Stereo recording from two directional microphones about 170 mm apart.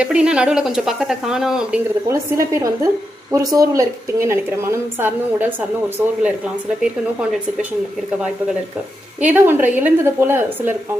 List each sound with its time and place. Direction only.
0.0 s speech: 5° right (ahead or behind)
2.0 s a woman's voice: 20° right (ahead or behind)
9.2 s a woman's voice: 10° right (ahead or behind)